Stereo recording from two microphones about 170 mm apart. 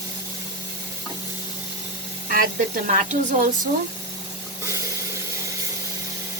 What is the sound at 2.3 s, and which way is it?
Speech, 55° right (ahead or behind).